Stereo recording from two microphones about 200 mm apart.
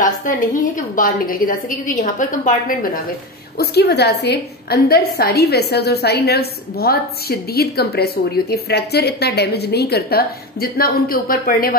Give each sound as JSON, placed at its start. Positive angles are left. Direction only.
{"t": 0.0, "sound": "a woman's voice", "side_deg": 40}
{"t": 3.5, "sound": "a woman's voice", "side_deg": 55}